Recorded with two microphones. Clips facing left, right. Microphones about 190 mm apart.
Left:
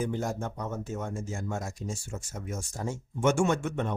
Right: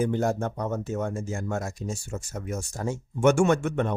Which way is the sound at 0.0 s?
65° right (ahead or behind).